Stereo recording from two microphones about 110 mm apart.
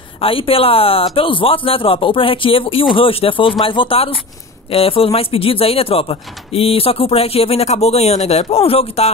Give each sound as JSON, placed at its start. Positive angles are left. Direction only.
{"t": 0.2, "sound": "speech", "side_deg": 55}